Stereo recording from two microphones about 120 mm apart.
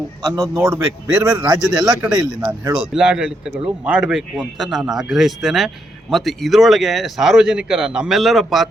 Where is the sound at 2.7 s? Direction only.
5° right (ahead or behind).